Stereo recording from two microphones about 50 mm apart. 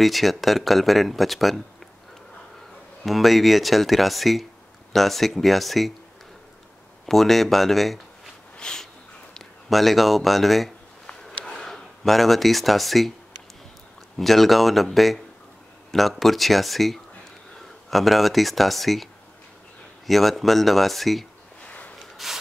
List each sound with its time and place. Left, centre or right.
0.0 s speech: centre
3.1 s speech: centre
7.1 s speech: centre
8.5 s a sound: centre
9.7 s speech: centre
11.7 s speech: centre
14.1 s speech: centre
20.1 s speech: centre
21.6 s a sound: left
22.1 s a sound: centre